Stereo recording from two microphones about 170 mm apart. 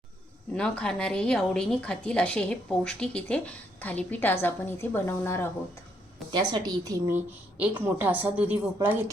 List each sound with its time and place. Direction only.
0.5 s speech: 5° left (ahead or behind)
6.5 s a woman's voice: 20° right (ahead or behind)
7.6 s a woman's voice: 10° right (ahead or behind)